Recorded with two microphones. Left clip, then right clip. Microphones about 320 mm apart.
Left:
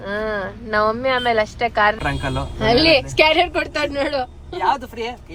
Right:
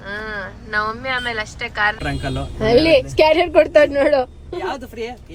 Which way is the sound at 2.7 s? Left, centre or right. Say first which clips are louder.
Right 2 dB; left.